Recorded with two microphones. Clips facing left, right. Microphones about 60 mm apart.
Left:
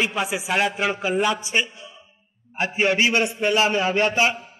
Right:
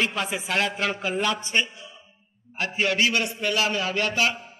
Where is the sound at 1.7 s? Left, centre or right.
Left.